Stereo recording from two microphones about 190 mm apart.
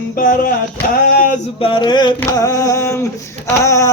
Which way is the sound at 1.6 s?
25° left (ahead or behind).